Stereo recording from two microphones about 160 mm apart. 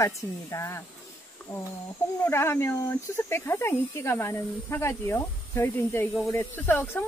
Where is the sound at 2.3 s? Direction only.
15° left (ahead or behind).